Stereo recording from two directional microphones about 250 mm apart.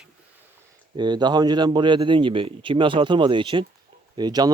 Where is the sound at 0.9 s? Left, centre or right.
Centre.